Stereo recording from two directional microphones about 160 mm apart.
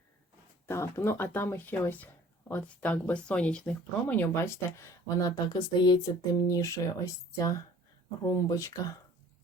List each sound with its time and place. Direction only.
0.7 s speech: 15° left (ahead or behind)